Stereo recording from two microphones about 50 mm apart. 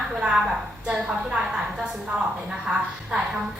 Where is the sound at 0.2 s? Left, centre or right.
Right.